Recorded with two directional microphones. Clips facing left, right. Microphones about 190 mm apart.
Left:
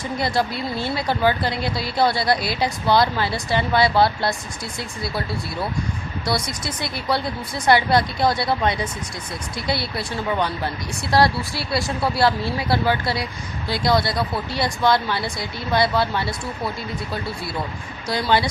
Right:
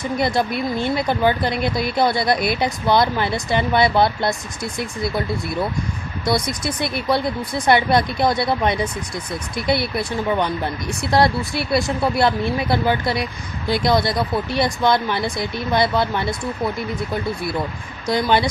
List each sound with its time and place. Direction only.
0.2 s speech: 20° right (ahead or behind)
6.2 s speech: 20° right (ahead or behind)